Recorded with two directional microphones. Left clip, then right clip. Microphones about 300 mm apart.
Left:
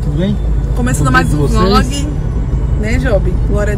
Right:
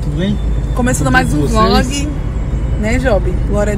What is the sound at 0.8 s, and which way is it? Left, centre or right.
Speech, centre.